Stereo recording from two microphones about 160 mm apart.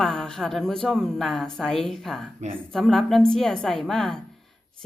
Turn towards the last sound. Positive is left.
turn(degrees=5)  # may be behind; listen again after turning